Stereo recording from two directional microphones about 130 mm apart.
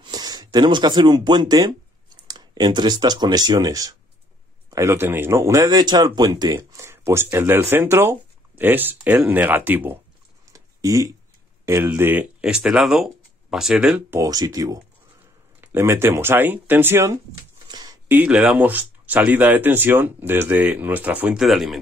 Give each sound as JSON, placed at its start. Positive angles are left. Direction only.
{"t": 0.0, "sound": "speech", "side_deg": -30}
{"t": 10.5, "sound": "a sound", "side_deg": -25}
{"t": 11.6, "sound": "speech", "side_deg": -15}
{"t": 14.1, "sound": "speech", "side_deg": -25}
{"t": 17.6, "sound": "a sound", "side_deg": -30}
{"t": 18.0, "sound": "speech", "side_deg": -10}